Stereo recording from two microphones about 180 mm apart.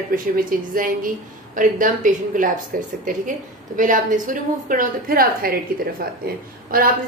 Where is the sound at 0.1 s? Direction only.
50° right (ahead or behind).